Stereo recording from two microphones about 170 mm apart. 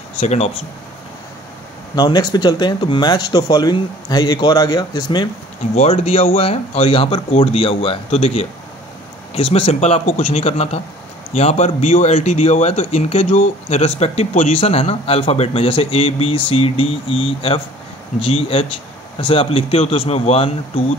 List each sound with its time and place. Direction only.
0.2 s speech: 40° left (ahead or behind)
2.0 s speech: 25° left (ahead or behind)
5.8 s speech: 35° left (ahead or behind)